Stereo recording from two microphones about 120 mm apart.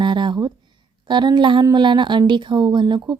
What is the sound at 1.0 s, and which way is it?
A woman's voice, 40° right (ahead or behind).